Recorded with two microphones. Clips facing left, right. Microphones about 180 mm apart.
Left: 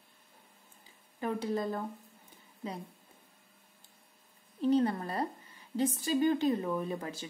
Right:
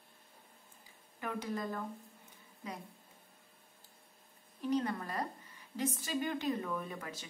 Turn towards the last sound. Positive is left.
turn(degrees=30)  # may be behind; listen again after turning